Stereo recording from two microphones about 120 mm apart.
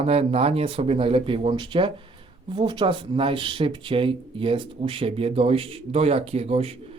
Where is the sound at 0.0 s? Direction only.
55° right (ahead or behind).